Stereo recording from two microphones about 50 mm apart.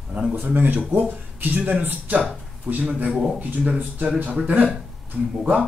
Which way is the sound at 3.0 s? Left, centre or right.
Right.